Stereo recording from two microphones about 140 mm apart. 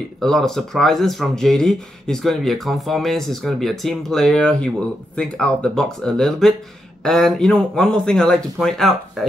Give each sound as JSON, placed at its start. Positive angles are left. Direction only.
{"t": 0.2, "sound": "speech", "side_deg": 5}